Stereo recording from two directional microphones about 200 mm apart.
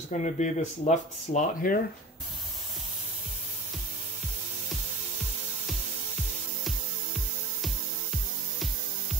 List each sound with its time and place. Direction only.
0.2 s speech: 35° left (ahead or behind)